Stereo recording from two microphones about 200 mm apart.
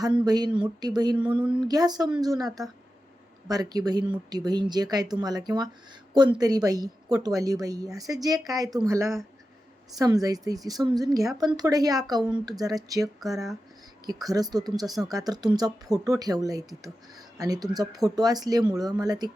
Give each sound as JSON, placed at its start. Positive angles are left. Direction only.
{"t": 0.3, "sound": "speech", "side_deg": -20}
{"t": 1.2, "sound": "speech", "side_deg": -5}
{"t": 1.6, "sound": "a woman's voice", "side_deg": -20}
{"t": 13.1, "sound": "speech", "side_deg": 0}
{"t": 14.1, "sound": "speech", "side_deg": -20}